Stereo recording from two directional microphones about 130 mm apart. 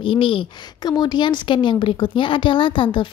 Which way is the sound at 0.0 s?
40° left (ahead or behind).